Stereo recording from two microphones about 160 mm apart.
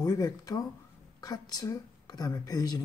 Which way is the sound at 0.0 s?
20° left (ahead or behind).